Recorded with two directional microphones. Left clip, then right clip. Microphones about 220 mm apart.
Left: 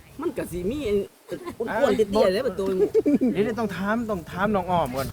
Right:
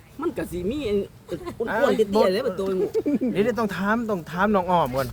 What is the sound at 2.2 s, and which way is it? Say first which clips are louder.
Speech: even; 15° right (ahead or behind).